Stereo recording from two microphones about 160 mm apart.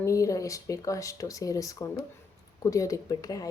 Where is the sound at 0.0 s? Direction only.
20° left (ahead or behind).